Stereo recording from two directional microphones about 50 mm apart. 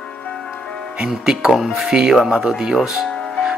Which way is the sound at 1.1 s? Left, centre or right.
Centre.